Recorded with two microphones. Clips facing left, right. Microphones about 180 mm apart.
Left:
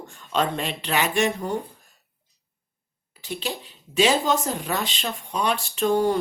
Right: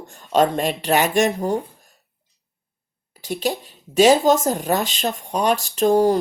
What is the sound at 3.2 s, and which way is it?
Speech, 45° right (ahead or behind).